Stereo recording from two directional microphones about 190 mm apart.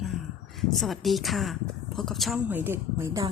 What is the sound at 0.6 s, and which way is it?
Speech, centre (ahead or behind).